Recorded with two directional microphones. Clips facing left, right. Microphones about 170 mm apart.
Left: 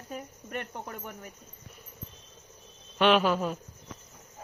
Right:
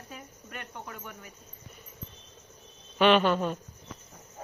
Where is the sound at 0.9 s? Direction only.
45° left (ahead or behind).